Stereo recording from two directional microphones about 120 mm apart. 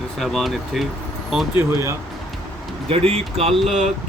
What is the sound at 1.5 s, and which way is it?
Speech, 25° right (ahead or behind).